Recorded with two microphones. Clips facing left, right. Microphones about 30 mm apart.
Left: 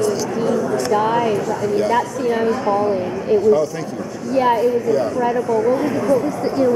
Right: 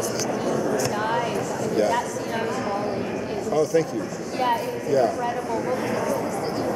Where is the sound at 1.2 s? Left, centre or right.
Centre.